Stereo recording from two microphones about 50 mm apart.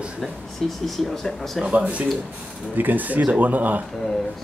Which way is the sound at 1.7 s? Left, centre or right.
Right.